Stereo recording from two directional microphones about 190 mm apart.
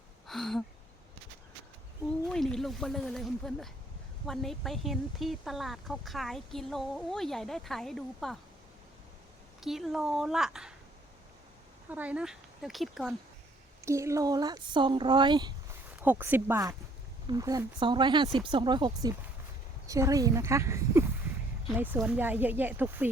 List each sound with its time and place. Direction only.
0.3 s speech: centre (ahead or behind)
2.2 s speech: centre (ahead or behind)
9.6 s speech: centre (ahead or behind)
11.9 s speech: 10° right (ahead or behind)
13.8 s speech: 15° right (ahead or behind)
16.0 s a woman's voice: 10° right (ahead or behind)